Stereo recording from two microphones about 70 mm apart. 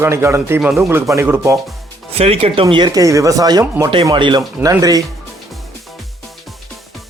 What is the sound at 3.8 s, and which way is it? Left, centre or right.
Speech, right.